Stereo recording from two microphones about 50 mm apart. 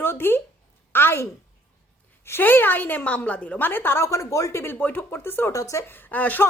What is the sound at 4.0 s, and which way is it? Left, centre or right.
Speech, left.